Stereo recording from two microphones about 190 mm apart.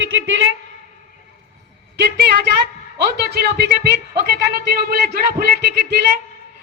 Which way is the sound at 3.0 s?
55° right (ahead or behind).